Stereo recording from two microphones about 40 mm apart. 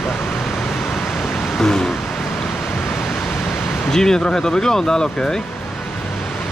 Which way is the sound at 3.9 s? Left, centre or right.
Centre.